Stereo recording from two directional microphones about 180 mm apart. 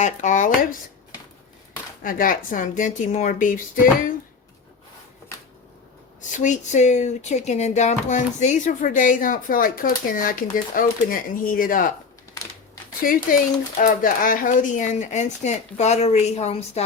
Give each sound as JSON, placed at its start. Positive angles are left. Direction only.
{"t": 0.0, "sound": "speech", "side_deg": 45}
{"t": 2.0, "sound": "speech", "side_deg": 50}
{"t": 6.3, "sound": "speech", "side_deg": 45}
{"t": 13.0, "sound": "speech", "side_deg": 50}